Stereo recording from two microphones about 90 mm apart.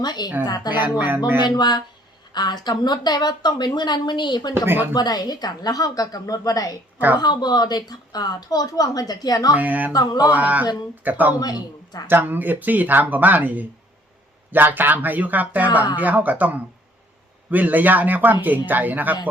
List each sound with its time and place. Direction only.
0.0 s speech: 50° left (ahead or behind)
0.8 s speech: 20° right (ahead or behind)
1.4 s a woman's voice: 55° left (ahead or behind)
4.6 s speech: 25° right (ahead or behind)
4.9 s speech: 50° left (ahead or behind)
9.6 s speech: 20° right (ahead or behind)
9.9 s speech: 45° left (ahead or behind)
10.3 s speech: 15° right (ahead or behind)
11.3 s speech: 45° left (ahead or behind)
12.0 s speech: 20° right (ahead or behind)